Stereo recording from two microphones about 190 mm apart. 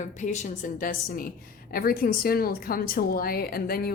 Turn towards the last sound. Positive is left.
turn(degrees=50)  # may be behind; listen again after turning